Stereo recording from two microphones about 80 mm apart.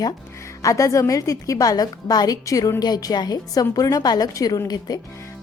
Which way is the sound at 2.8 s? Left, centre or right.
Left.